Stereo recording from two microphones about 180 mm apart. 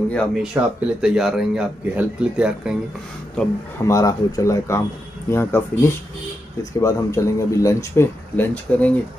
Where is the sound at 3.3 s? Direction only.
10° left (ahead or behind).